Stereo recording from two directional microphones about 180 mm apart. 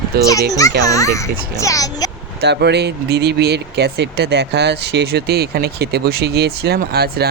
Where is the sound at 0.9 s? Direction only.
15° left (ahead or behind).